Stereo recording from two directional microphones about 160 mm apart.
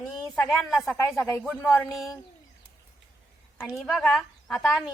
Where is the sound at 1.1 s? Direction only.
10° left (ahead or behind).